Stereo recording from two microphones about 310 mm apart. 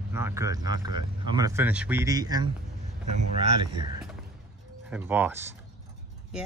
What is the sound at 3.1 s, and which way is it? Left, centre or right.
Speech, right.